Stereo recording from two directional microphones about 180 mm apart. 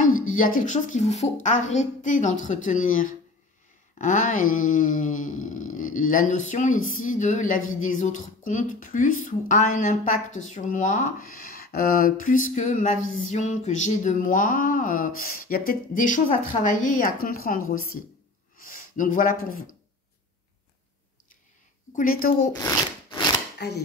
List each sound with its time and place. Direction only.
0.0 s speech: 50° left (ahead or behind)
21.9 s speech: 50° left (ahead or behind)